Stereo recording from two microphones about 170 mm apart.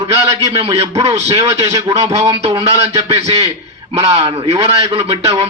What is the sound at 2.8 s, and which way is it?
Speech, 20° right (ahead or behind).